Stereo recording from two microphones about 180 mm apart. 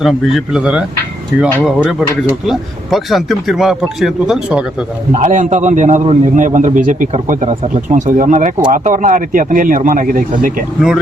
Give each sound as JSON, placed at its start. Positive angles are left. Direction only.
{"t": 0.0, "sound": "speech", "side_deg": 0}
{"t": 5.1, "sound": "a man's voice", "side_deg": -40}